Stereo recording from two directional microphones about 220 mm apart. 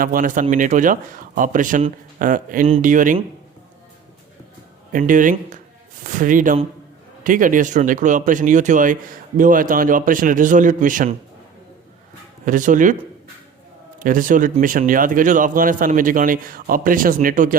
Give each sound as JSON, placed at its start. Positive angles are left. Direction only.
{"t": 0.0, "sound": "speech", "side_deg": -40}
{"t": 4.9, "sound": "speech", "side_deg": -35}
{"t": 12.5, "sound": "speech", "side_deg": -35}
{"t": 14.0, "sound": "speech", "side_deg": -40}